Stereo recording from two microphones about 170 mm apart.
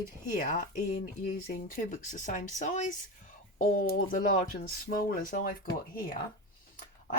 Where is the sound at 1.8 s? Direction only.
45° left (ahead or behind).